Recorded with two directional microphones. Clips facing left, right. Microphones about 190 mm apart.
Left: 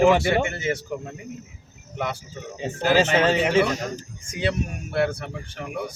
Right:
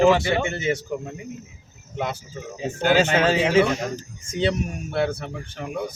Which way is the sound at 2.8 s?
Centre (ahead or behind).